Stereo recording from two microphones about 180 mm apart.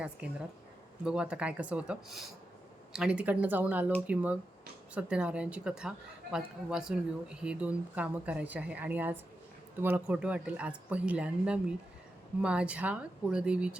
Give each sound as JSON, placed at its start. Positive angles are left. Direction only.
{"t": 1.0, "sound": "speech", "side_deg": -5}